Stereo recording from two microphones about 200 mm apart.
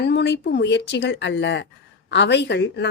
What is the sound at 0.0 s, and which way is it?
A woman's voice, 60° left (ahead or behind).